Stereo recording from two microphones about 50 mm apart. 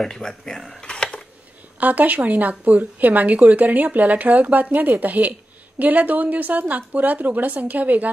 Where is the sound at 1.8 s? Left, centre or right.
Right.